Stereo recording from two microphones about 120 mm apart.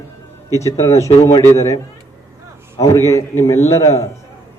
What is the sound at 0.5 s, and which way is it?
A man's voice, 25° left (ahead or behind).